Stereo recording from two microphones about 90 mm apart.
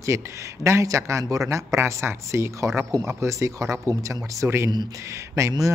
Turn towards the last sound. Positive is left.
turn(degrees=-35)  # may be behind; listen again after turning